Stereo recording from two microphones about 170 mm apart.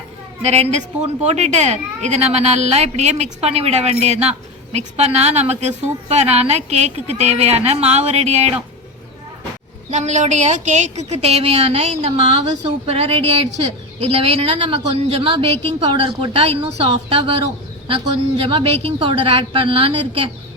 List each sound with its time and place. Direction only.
0.4 s speech: 40° right (ahead or behind)
9.9 s speech: 45° right (ahead or behind)